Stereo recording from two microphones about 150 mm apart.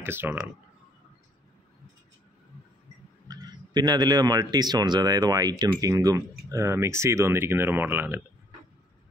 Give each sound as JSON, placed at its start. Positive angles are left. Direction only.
{"t": 0.0, "sound": "speech", "side_deg": -15}
{"t": 3.3, "sound": "a man's voice", "side_deg": -25}